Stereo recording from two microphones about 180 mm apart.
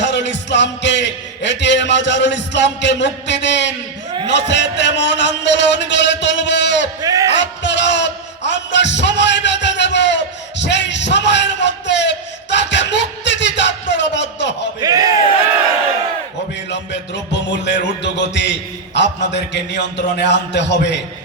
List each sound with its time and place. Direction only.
0.0 s a man's voice: 80° left
7.0 s a man's voice: 20° right (ahead or behind)
7.6 s a sound: 80° left
14.8 s speech: 20° right (ahead or behind)
16.6 s music: 75° left (ahead or behind)